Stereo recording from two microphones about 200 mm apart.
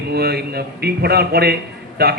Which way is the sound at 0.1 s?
50° right (ahead or behind).